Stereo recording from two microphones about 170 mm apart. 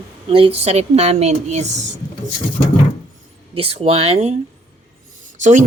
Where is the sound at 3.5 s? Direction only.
35° right (ahead or behind).